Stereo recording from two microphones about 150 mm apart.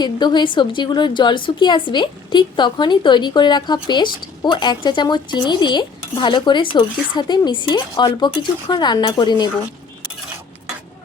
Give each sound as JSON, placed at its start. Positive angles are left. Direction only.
{"t": 0.0, "sound": "a woman's voice", "side_deg": 30}